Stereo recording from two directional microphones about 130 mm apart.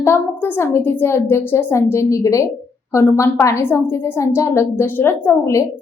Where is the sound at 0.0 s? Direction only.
15° left (ahead or behind).